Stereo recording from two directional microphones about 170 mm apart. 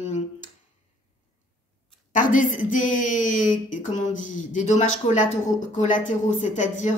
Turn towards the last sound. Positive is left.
turn(degrees=45)  # may be behind; listen again after turning